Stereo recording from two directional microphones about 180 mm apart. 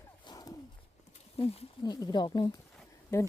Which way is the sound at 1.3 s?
30° left (ahead or behind).